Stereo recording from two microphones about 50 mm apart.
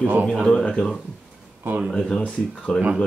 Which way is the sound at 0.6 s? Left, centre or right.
Left.